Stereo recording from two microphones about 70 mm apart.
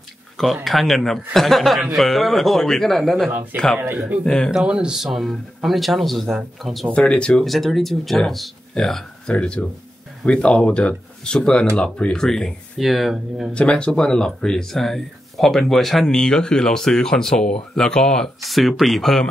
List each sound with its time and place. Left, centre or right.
0.7 s speech: centre
4.6 s speech: centre
6.9 s speech: centre
7.4 s speech: centre
9.3 s speech: centre
13.5 s speech: centre